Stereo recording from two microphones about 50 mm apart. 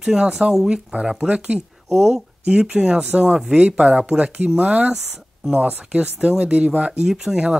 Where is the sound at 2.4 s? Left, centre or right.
Right.